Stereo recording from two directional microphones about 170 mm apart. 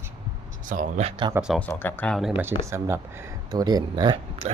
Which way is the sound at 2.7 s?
15° right (ahead or behind).